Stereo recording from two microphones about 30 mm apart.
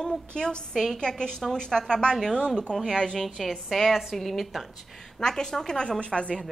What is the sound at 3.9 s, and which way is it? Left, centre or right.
Speech, centre.